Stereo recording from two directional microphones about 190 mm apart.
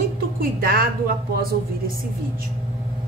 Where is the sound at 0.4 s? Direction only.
50° right (ahead or behind).